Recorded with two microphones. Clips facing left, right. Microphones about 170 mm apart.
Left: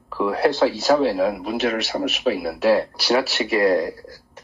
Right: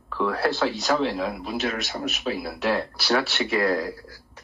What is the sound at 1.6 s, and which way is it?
Speech, centre (ahead or behind).